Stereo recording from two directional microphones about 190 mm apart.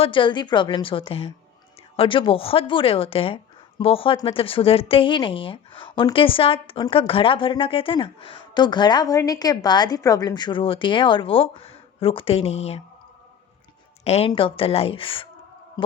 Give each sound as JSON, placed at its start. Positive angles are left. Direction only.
{"t": 0.0, "sound": "speech", "side_deg": 25}
{"t": 14.0, "sound": "speech", "side_deg": 35}